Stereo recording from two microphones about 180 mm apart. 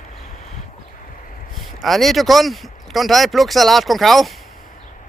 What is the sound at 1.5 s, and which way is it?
Speech, centre (ahead or behind).